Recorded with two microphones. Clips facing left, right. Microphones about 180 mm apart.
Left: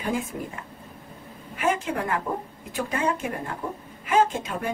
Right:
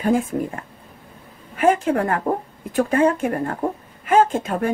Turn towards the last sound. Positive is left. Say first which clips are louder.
# right 5 dB
turn(degrees=-50)  # may be behind; listen again after turning